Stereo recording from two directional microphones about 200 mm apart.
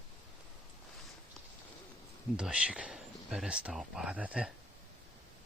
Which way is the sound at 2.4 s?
5° right (ahead or behind).